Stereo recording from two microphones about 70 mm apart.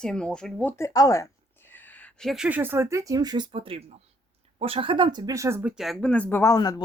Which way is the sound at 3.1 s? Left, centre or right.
Right.